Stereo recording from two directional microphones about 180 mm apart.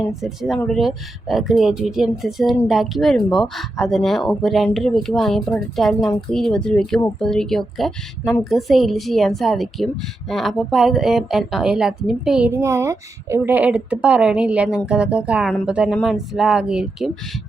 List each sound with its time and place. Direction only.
0.2 s a woman's voice: centre (ahead or behind)